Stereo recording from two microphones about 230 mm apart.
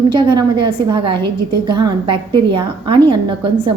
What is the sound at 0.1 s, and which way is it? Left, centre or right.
A woman's voice, centre.